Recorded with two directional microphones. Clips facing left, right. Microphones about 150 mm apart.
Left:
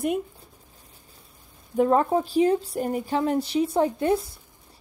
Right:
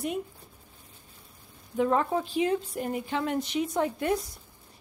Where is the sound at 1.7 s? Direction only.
40° left (ahead or behind).